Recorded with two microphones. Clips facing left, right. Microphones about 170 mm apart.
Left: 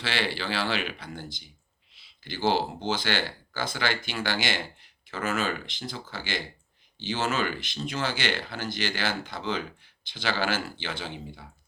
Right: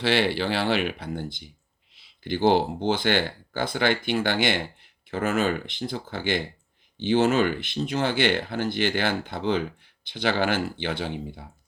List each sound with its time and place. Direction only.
0.0 s speech: 55° right (ahead or behind)